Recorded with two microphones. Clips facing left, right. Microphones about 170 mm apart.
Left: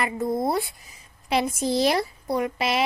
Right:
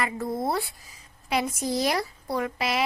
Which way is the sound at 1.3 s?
30° left (ahead or behind).